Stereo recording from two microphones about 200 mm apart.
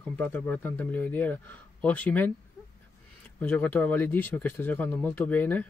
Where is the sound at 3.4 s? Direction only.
10° left (ahead or behind).